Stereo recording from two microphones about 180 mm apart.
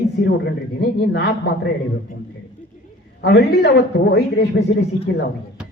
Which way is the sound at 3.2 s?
70° left (ahead or behind).